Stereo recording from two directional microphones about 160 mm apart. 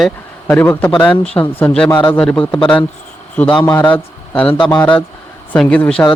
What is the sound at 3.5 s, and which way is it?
Speech, 30° left (ahead or behind).